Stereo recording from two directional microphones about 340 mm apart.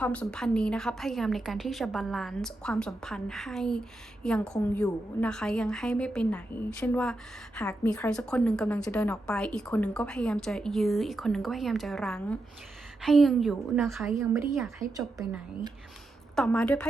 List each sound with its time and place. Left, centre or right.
0.0 s a woman's voice: centre
16.3 s a woman's voice: centre